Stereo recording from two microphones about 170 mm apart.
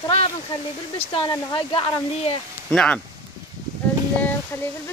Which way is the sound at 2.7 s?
5° left (ahead or behind).